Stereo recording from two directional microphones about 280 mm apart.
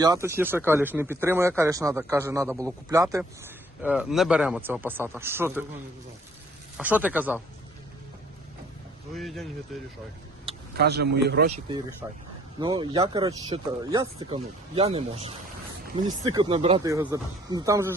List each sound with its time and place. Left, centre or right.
0.0 s speech: centre
6.7 s speech: centre
9.1 s speech: centre
10.8 s speech: right
12.0 s speech: centre